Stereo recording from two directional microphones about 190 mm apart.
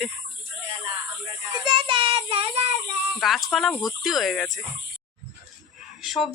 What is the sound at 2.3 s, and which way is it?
Child singing, 30° right (ahead or behind).